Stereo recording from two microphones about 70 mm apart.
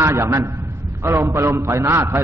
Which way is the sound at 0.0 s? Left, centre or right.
Right.